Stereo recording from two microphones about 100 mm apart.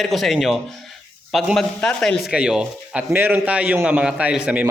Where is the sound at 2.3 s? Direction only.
5° right (ahead or behind).